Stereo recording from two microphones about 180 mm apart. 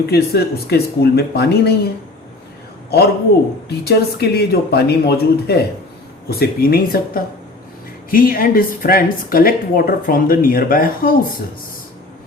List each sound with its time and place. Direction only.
0.0 s speech: 60° left (ahead or behind)
3.7 s a woman's voice: 65° left (ahead or behind)